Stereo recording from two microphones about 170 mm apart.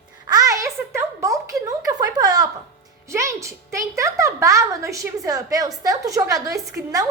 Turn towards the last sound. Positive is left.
turn(degrees=-20)  # may be behind; listen again after turning